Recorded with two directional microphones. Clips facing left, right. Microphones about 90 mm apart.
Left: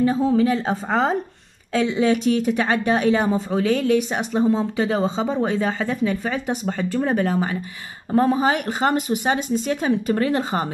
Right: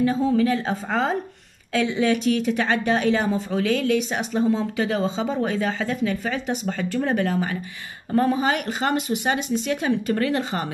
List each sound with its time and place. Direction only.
0.0 s a woman's voice: 30° left (ahead or behind)
2.4 s a woman's voice: 40° left (ahead or behind)